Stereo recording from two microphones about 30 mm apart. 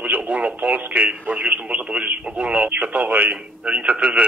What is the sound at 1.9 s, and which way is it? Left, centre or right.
Speech, right.